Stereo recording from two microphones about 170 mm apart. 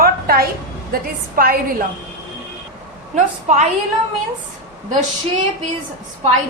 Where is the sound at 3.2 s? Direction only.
45° right (ahead or behind).